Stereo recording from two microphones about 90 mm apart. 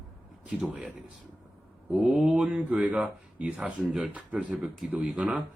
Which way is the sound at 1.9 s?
5° right (ahead or behind).